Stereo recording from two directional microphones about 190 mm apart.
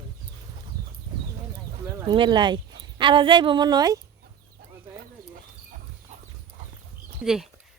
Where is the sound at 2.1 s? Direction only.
25° right (ahead or behind).